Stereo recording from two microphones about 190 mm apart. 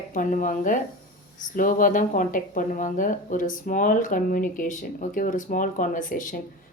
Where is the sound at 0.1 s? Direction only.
45° left (ahead or behind).